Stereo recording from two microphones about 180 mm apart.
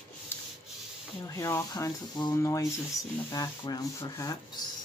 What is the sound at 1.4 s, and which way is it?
Speech, 20° left (ahead or behind).